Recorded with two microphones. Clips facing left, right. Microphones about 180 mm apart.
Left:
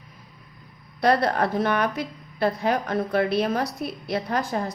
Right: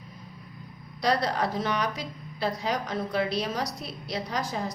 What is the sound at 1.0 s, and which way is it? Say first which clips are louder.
A woman's voice: left 5 dB; 55° left (ahead or behind).